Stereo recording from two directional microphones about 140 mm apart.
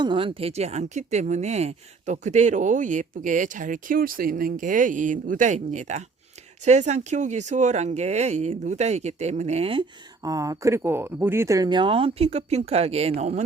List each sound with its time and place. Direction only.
0.0 s speech: 35° right (ahead or behind)
10.2 s speech: 25° right (ahead or behind); by 13.4 s 50° right (ahead or behind)